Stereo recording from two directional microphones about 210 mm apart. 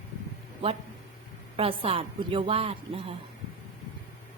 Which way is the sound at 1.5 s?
25° right (ahead or behind).